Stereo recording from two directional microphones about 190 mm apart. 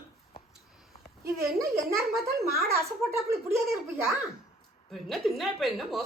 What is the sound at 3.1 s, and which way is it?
A woman's voice, 15° right (ahead or behind).